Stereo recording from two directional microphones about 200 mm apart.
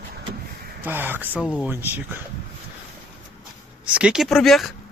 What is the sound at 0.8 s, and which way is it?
Speech, 10° right (ahead or behind).